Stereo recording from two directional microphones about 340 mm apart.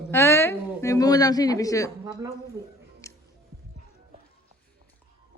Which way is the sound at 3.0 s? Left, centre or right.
Centre.